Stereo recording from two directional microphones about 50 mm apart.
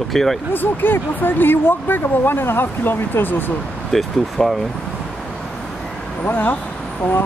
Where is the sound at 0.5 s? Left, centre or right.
Left.